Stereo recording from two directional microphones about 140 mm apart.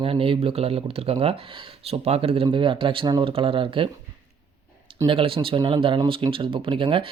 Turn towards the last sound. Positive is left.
turn(degrees=-35)  # may be behind; listen again after turning